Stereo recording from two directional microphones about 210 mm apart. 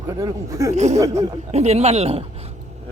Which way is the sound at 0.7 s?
35° right (ahead or behind).